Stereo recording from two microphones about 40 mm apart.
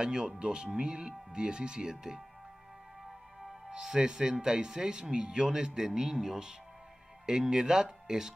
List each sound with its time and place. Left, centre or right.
0.0 s speech: centre
3.7 s speech: centre